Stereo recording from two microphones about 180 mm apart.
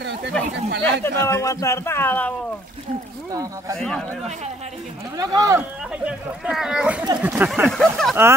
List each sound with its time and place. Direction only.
0.0 s a sound: 70° right (ahead or behind)
0.7 s speech: 75° right (ahead or behind)
1.0 s speech: 15° left (ahead or behind)
3.7 s speech: 5° left (ahead or behind)
5.1 s speech: 20° right (ahead or behind)
6.0 s speech: 5° right (ahead or behind)